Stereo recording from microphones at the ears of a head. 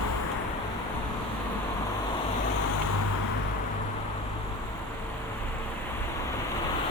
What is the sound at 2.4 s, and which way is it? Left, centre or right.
Vehicle, left.